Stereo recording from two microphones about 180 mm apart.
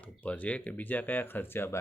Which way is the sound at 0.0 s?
10° left (ahead or behind).